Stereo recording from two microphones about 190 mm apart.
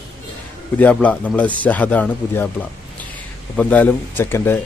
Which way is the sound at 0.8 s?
10° left (ahead or behind).